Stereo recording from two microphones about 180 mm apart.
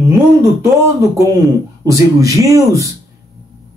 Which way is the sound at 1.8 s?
20° right (ahead or behind).